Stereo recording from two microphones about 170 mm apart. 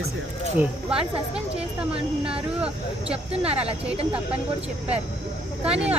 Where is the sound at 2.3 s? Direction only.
5° right (ahead or behind).